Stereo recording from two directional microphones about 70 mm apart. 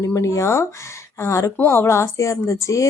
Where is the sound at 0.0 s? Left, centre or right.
Left.